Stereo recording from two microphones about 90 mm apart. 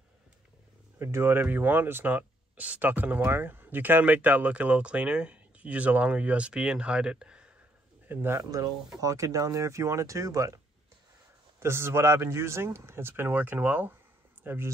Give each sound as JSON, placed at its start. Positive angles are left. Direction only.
{"t": 0.9, "sound": "speech", "side_deg": -30}
{"t": 8.1, "sound": "a man's voice", "side_deg": -25}
{"t": 8.5, "sound": "speech", "side_deg": -40}
{"t": 11.6, "sound": "a man's voice", "side_deg": -30}